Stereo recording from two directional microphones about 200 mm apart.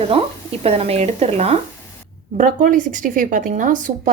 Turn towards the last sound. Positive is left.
turn(degrees=-40)  # may be behind; listen again after turning